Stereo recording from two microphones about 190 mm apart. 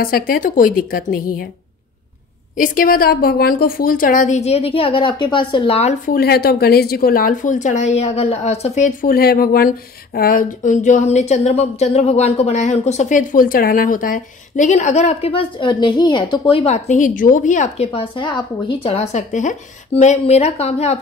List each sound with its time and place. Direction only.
0.0 s a woman's voice: 50° left (ahead or behind)
2.5 s a woman's voice: 45° left (ahead or behind)
6.1 s speech: 55° left (ahead or behind); by 21.0 s 35° left (ahead or behind)